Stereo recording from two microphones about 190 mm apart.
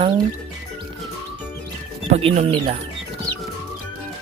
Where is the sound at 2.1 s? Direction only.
30° right (ahead or behind).